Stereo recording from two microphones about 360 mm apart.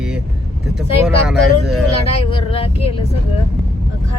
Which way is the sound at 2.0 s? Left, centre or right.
Centre.